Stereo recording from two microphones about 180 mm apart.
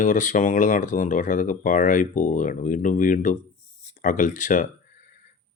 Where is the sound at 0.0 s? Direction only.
45° left (ahead or behind).